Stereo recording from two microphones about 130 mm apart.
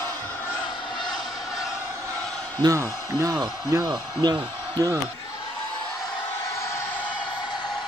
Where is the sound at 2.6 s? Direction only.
25° right (ahead or behind).